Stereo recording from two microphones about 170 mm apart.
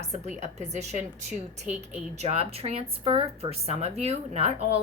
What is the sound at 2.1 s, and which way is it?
A woman's voice, 35° right (ahead or behind).